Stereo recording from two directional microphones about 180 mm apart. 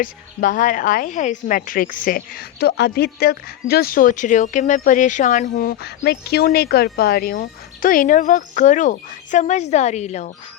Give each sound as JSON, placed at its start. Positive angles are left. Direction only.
{"t": 0.0, "sound": "a woman's voice", "side_deg": 50}
{"t": 6.0, "sound": "a woman's voice", "side_deg": 65}